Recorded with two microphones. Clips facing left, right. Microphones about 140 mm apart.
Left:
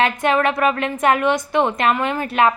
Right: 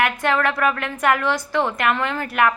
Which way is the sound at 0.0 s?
20° left (ahead or behind).